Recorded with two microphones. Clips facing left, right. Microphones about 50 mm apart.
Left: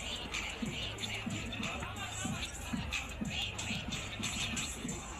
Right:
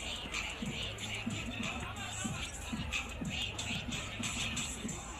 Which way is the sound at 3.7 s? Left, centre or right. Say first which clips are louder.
Even; right.